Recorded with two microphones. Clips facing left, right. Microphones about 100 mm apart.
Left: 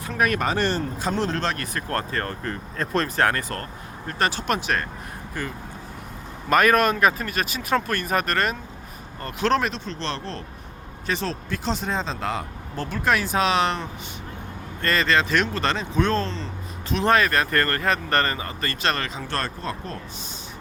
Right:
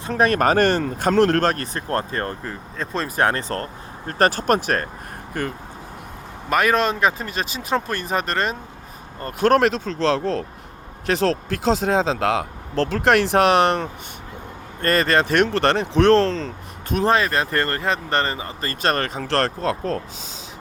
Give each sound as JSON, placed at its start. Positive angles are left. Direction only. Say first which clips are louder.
{"t": 0.1, "sound": "speech", "louder": "right 5 dB", "side_deg": -35}
{"t": 0.3, "sound": "speech", "louder": "right 6 dB", "side_deg": -55}
{"t": 0.8, "sound": "speech", "louder": "right 8 dB", "side_deg": -70}
{"t": 1.5, "sound": "speech", "louder": "right 3 dB", "side_deg": -30}
{"t": 2.4, "sound": "speech", "louder": "left 1 dB", "side_deg": 0}
{"t": 3.2, "sound": "speech", "louder": "right 2 dB", "side_deg": -25}
{"t": 6.5, "sound": "speech", "louder": "left 1 dB", "side_deg": -15}
{"t": 9.2, "sound": "speech", "louder": "right 5 dB", "side_deg": -50}
{"t": 11.0, "sound": "speech", "louder": "right 8 dB", "side_deg": -90}
{"t": 15.4, "sound": "speech", "louder": "right 6 dB", "side_deg": -65}
{"t": 17.1, "sound": "speech", "louder": "even", "side_deg": -25}
{"t": 18.7, "sound": "speech", "louder": "right 5 dB", "side_deg": -45}
{"t": 19.3, "sound": "speech", "louder": "right 10 dB", "side_deg": -85}